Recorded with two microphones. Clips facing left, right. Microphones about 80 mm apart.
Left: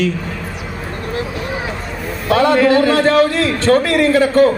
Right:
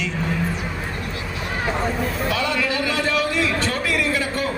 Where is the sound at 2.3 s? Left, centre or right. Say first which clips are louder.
Left 14 dB; left.